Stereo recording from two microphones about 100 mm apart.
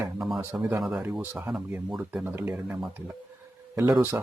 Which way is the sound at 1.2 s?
20° right (ahead or behind).